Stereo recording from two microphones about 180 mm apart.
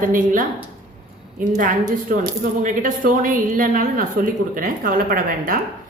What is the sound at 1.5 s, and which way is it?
Speech, 45° right (ahead or behind).